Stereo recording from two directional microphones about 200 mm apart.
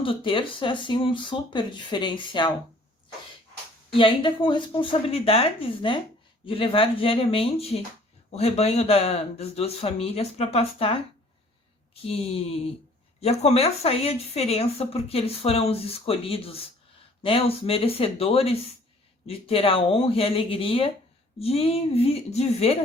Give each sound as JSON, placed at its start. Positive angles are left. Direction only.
{"t": 0.0, "sound": "speech", "side_deg": 25}
{"t": 3.9, "sound": "speech", "side_deg": 25}
{"t": 12.0, "sound": "speech", "side_deg": 30}